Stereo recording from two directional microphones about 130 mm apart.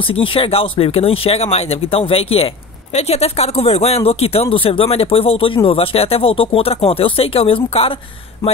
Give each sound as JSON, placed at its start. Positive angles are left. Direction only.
{"t": 0.1, "sound": "speech", "side_deg": 45}